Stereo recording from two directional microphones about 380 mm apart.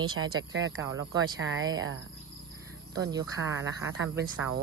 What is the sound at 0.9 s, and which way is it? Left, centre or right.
Speech, centre.